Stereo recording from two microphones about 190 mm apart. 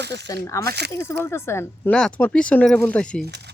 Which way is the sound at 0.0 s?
60° right (ahead or behind).